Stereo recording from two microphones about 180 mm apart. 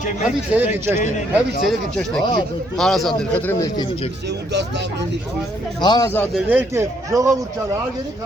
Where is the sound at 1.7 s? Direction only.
5° left (ahead or behind); by 4.1 s 25° left (ahead or behind).